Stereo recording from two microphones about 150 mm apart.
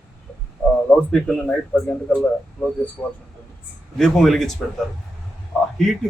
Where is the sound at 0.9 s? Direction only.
5° left (ahead or behind).